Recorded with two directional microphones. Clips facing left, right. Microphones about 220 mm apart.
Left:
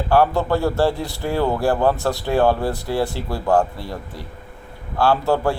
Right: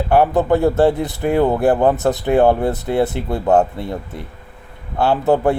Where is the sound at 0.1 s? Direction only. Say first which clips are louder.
Right 3 dB; 20° right (ahead or behind).